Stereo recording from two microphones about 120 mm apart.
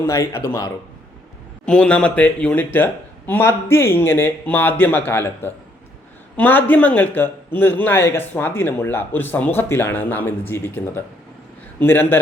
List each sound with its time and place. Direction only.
0.1 s speech: 25° left (ahead or behind)
1.6 s a man's voice: 10° left (ahead or behind)